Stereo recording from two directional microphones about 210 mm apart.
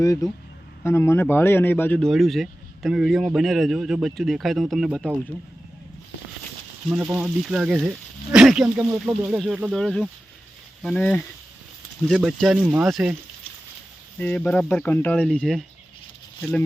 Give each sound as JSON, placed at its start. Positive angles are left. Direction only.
{"t": 0.0, "sound": "speech", "side_deg": 15}
{"t": 6.9, "sound": "speech", "side_deg": -5}
{"t": 14.2, "sound": "speech", "side_deg": 5}